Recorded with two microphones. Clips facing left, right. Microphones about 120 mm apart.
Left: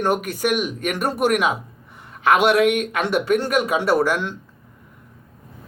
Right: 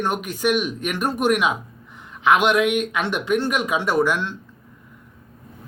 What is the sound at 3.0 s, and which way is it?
Speech, 10° left (ahead or behind).